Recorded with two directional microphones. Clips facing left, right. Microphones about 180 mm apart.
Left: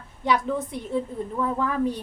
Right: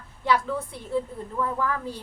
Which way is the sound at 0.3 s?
20° left (ahead or behind).